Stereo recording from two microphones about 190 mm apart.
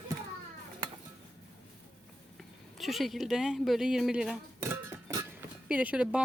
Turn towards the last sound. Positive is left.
turn(degrees=-5)  # may be behind; listen again after turning